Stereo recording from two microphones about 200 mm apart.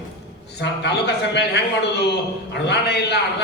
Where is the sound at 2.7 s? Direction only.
55° left (ahead or behind).